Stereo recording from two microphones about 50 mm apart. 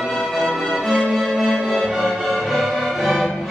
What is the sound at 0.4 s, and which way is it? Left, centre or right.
Music, centre.